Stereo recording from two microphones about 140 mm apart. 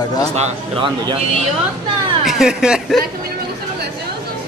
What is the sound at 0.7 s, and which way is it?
Speech, 35° right (ahead or behind).